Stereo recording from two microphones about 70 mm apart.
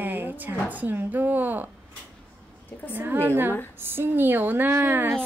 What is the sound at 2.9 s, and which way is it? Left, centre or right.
Speech, right.